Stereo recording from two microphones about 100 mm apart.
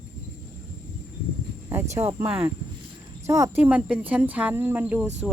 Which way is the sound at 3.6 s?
15° right (ahead or behind).